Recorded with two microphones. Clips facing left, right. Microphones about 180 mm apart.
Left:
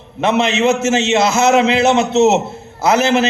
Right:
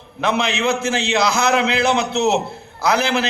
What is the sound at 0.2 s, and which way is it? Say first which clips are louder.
A man's voice: left 5 dB; 25° left (ahead or behind).